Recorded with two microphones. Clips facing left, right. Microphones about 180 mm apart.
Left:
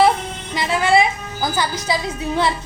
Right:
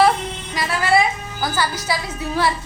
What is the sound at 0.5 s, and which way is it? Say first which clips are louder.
Music: left 2 dB; 20° left (ahead or behind).